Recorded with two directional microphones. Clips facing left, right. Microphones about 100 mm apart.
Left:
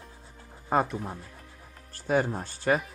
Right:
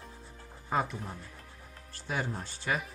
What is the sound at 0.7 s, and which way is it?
Speech, 45° left (ahead or behind).